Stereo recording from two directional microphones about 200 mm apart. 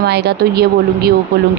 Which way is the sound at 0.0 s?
55° right (ahead or behind).